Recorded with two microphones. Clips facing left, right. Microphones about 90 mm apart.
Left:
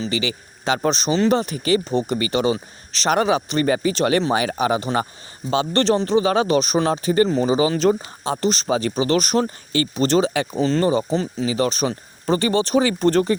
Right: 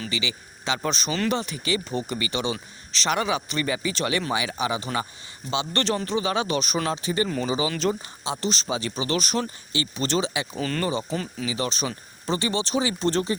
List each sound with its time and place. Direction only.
0.1 s speech: 40° left (ahead or behind)
10.6 s speech: 25° left (ahead or behind); by 13.3 s 50° left (ahead or behind)